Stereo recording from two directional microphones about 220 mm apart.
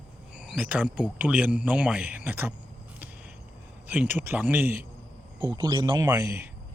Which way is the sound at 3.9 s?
10° right (ahead or behind).